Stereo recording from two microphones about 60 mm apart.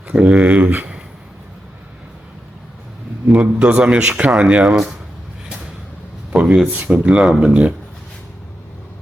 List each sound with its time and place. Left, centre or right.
0.1 s speech: centre
3.2 s speech: right
6.3 s a sound: centre
6.7 s speech: right